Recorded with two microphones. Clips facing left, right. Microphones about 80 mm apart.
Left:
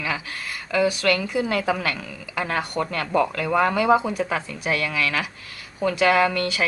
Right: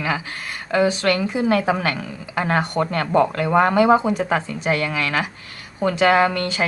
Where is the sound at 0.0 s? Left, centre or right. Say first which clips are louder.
Right 4 dB; right.